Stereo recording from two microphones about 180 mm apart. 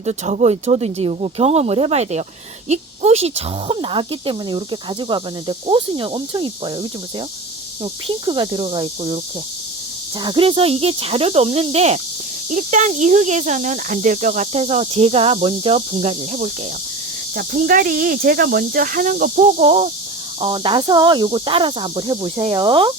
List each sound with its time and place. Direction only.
0.0 s speech: 40° right (ahead or behind)
8.0 s speech: 25° right (ahead or behind)
17.3 s speech: 50° right (ahead or behind); by 22.9 s 25° right (ahead or behind)